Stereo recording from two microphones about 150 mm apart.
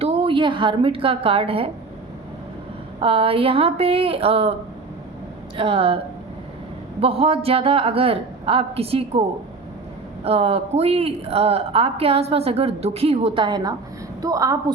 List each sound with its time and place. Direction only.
0.0 s a woman's voice: 40° right (ahead or behind)
3.0 s a woman's voice: 40° right (ahead or behind)
5.5 s a woman's voice: 40° right (ahead or behind)
7.0 s a woman's voice: 40° right (ahead or behind)
10.2 s a woman's voice: 40° right (ahead or behind); by 14.6 s 25° right (ahead or behind)